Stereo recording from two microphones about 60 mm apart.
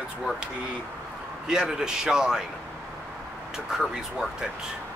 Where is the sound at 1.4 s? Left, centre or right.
Centre.